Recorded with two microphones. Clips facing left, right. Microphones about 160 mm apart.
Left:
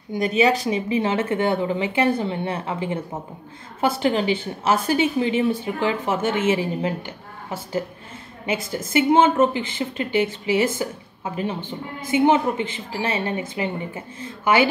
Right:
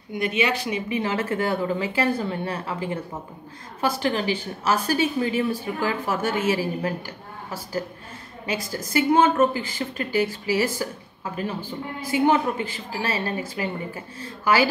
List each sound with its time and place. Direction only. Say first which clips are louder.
0.1 s a woman's voice: left 5 dB; 35° left (ahead or behind)